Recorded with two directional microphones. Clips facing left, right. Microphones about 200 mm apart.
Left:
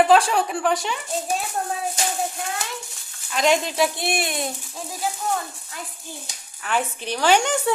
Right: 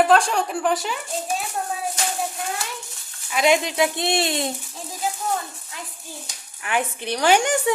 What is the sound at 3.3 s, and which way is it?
Speech, 10° right (ahead or behind).